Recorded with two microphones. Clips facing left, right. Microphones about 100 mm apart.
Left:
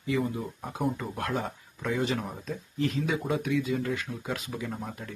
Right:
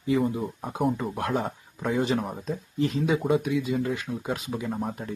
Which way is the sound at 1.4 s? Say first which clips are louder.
Right 4 dB; 30° right (ahead or behind).